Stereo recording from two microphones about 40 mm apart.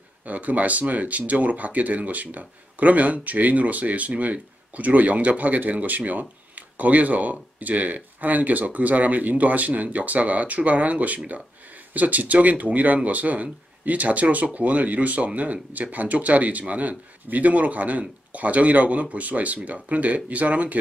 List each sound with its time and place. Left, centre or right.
0.2 s speech: right